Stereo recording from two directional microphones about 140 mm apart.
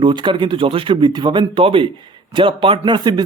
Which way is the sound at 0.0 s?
35° right (ahead or behind).